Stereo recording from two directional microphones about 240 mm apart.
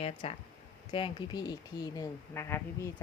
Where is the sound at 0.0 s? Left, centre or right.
Left.